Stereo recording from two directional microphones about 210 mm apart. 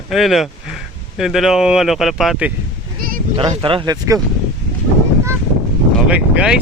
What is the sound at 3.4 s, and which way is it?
Speech, 25° right (ahead or behind).